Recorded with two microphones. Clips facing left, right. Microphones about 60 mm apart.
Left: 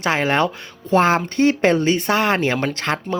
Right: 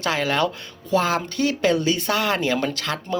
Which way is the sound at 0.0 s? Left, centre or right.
Left.